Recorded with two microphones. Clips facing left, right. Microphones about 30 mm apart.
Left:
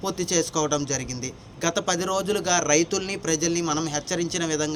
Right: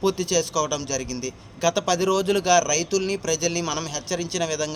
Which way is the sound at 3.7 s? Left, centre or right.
Centre.